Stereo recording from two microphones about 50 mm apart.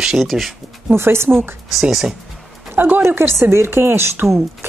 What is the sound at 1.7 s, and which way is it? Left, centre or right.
Speech, centre.